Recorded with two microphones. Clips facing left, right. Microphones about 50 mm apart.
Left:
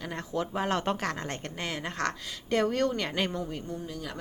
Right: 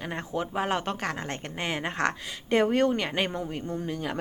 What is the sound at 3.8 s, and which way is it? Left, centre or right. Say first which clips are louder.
Speech: right 6 dB; right.